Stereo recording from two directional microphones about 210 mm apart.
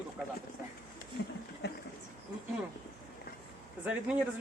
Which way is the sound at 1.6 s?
50° left (ahead or behind).